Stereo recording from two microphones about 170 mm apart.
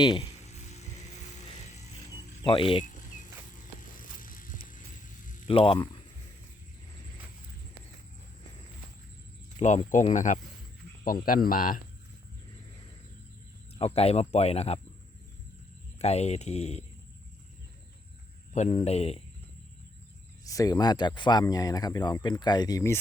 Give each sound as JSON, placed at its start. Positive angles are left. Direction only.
{"t": 0.0, "sound": "speech", "side_deg": 25}
{"t": 0.7, "sound": "music", "side_deg": 40}
{"t": 2.4, "sound": "speech", "side_deg": 30}
{"t": 2.8, "sound": "a sound", "side_deg": 50}
{"t": 5.5, "sound": "speech", "side_deg": 30}
{"t": 9.6, "sound": "speech", "side_deg": 45}
{"t": 11.0, "sound": "speech", "side_deg": 55}
{"t": 13.7, "sound": "speech", "side_deg": 35}
{"t": 16.0, "sound": "speech", "side_deg": 40}
{"t": 18.5, "sound": "speech", "side_deg": 40}
{"t": 20.4, "sound": "speech", "side_deg": 20}